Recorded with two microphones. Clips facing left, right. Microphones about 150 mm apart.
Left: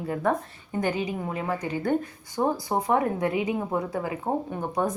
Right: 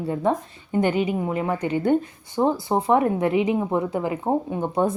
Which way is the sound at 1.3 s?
25° right (ahead or behind).